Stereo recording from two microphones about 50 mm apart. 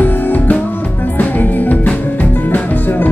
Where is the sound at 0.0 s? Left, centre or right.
Left.